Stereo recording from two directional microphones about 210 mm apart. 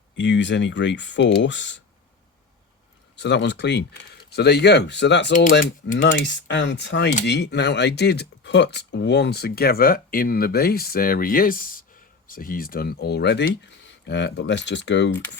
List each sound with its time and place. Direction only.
0.2 s speech: 55° left (ahead or behind)
3.2 s speech: 55° left (ahead or behind)